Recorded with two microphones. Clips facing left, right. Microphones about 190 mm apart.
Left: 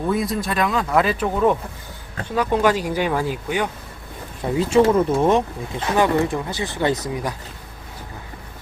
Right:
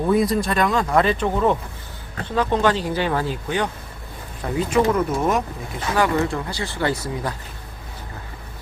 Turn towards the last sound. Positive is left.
turn(degrees=15)  # may be behind; listen again after turning